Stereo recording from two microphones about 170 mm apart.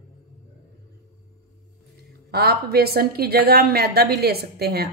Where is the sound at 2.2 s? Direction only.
70° right (ahead or behind).